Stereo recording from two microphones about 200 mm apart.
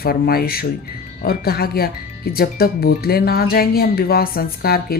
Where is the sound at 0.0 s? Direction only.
50° left (ahead or behind).